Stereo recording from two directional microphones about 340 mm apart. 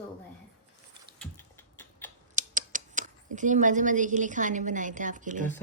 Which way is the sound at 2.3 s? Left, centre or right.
Right.